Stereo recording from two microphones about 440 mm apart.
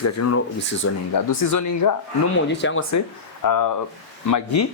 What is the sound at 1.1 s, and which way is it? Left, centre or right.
Speech, left.